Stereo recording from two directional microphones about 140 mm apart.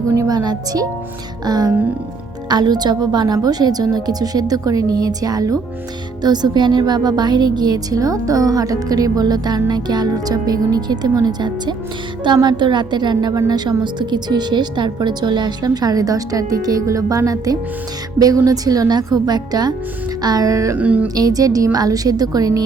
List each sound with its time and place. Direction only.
0.1 s a woman's voice: 25° right (ahead or behind)
20.7 s speech: 10° right (ahead or behind)
21.2 s a woman's voice: 25° right (ahead or behind)